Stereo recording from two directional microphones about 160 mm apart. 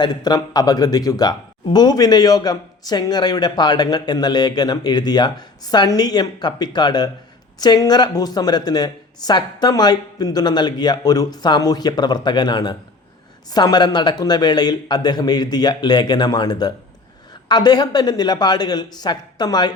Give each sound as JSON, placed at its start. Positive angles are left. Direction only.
{"t": 0.0, "sound": "a man's voice", "side_deg": 25}